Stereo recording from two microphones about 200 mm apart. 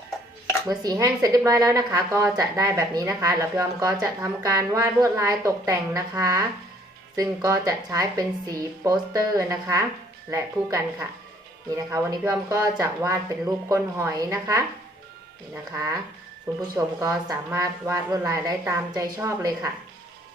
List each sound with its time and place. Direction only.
0.7 s a woman's voice: 15° right (ahead or behind)
16.6 s a woman's voice: 10° right (ahead or behind)